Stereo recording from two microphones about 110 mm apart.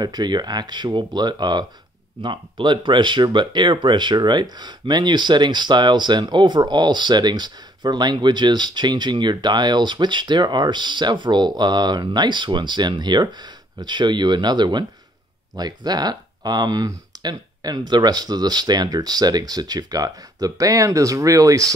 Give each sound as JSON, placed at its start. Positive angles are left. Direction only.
{"t": 0.0, "sound": "speech", "side_deg": -40}